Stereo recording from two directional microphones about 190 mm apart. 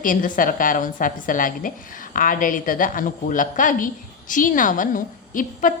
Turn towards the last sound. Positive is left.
turn(degrees=45)  # may be behind; listen again after turning